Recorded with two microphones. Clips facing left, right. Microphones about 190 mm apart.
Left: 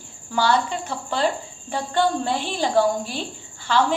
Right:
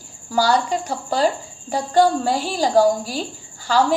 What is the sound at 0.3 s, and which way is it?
A woman's voice, 40° right (ahead or behind).